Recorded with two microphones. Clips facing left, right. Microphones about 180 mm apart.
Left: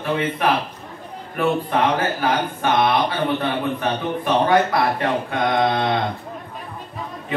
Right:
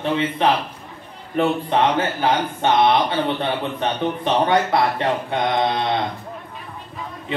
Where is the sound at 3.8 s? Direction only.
25° right (ahead or behind).